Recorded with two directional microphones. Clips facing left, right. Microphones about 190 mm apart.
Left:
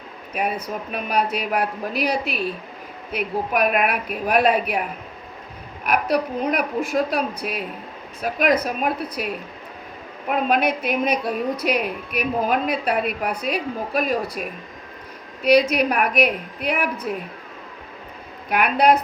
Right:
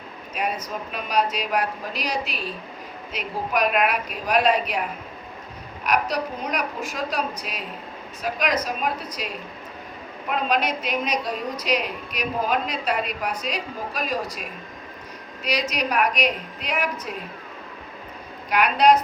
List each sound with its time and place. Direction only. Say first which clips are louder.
0.9 s a woman's voice: left 1 dB; 55° left (ahead or behind)
5.8 s a woman's voice: left 3 dB; 55° left (ahead or behind)
10.5 s a woman's voice: left 3 dB; 55° left (ahead or behind)
15.4 s a woman's voice: left 9 dB; 55° left (ahead or behind)
18.4 s a woman's voice: even; 55° left (ahead or behind)